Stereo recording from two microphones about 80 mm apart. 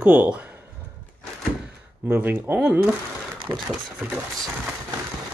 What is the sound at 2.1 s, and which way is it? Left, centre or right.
Speech, right.